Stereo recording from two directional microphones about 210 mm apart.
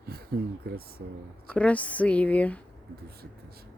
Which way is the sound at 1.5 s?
5° left (ahead or behind).